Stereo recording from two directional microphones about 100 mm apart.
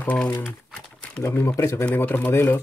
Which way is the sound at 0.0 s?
15° left (ahead or behind).